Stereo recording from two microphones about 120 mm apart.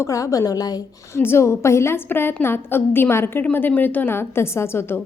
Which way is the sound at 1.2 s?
20° left (ahead or behind).